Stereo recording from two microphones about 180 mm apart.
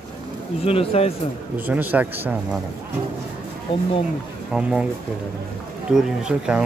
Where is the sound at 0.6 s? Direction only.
35° left (ahead or behind).